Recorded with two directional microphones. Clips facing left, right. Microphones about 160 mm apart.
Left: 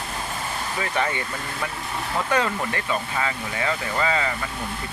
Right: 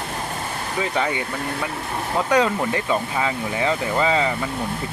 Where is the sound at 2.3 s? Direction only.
15° right (ahead or behind).